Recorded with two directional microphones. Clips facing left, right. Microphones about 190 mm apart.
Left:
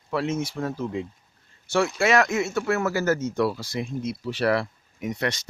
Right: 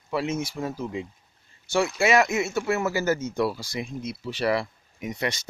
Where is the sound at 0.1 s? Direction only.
5° right (ahead or behind).